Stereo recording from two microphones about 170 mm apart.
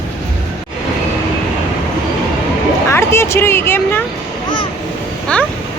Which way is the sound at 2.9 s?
15° left (ahead or behind).